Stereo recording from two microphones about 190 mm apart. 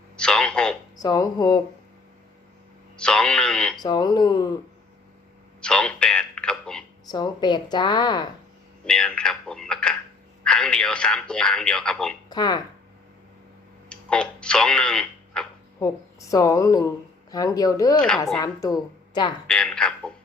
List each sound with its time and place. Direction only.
0.2 s speech: 5° left (ahead or behind)
0.9 s a woman's voice: 20° left (ahead or behind)
3.0 s a man's voice: 5° left (ahead or behind)
3.8 s a woman's voice: 20° left (ahead or behind)
5.5 s a sound: 5° left (ahead or behind)
7.1 s a woman's voice: 20° left (ahead or behind)
8.9 s a man's voice: 5° left (ahead or behind)
12.3 s a woman's voice: 20° left (ahead or behind)
13.9 s speech: 5° left (ahead or behind)
16.3 s a woman's voice: 15° left (ahead or behind)
19.5 s a man's voice: 5° left (ahead or behind)